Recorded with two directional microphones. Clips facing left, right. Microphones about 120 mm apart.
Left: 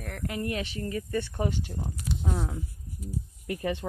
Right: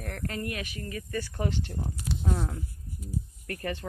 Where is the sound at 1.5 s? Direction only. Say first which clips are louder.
Even; 5° left (ahead or behind).